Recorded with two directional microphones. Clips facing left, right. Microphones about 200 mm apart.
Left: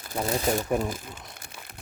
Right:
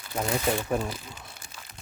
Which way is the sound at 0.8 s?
50° left (ahead or behind).